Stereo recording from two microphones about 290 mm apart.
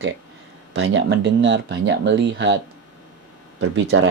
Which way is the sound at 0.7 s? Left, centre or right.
Right.